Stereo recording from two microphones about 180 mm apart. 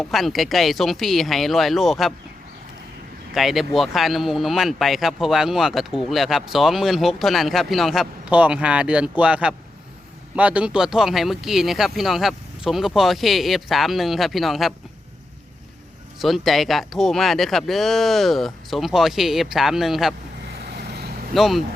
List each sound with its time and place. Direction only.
0.0 s speech: centre (ahead or behind)
3.3 s speech: centre (ahead or behind)
16.1 s speech: centre (ahead or behind)
20.6 s vehicle: 60° right (ahead or behind)
21.3 s speech: centre (ahead or behind)